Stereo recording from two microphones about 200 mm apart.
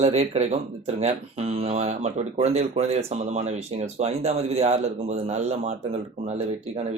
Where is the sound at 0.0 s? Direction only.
30° right (ahead or behind).